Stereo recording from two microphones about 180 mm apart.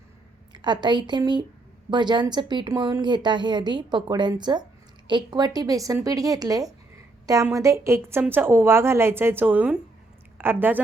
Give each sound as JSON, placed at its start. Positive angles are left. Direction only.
{"t": 0.5, "sound": "a woman's voice", "side_deg": -25}